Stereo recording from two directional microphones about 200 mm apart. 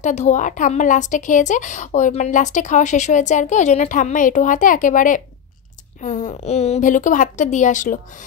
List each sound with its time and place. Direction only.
0.0 s a woman's voice: 35° left (ahead or behind)